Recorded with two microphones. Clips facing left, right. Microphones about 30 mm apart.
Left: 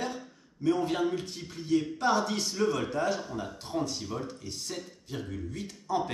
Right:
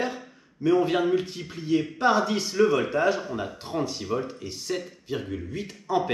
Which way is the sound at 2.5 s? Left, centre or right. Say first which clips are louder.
Right 8 dB; right.